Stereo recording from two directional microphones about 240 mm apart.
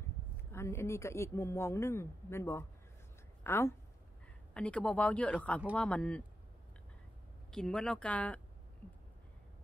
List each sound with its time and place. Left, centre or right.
0.4 s speech: centre
7.5 s speech: centre